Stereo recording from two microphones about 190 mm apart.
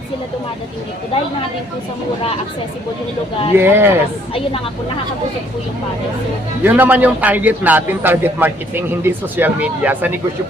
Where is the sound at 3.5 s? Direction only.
10° right (ahead or behind).